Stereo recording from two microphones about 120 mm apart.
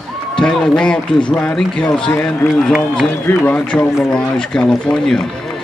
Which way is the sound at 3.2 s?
15° left (ahead or behind).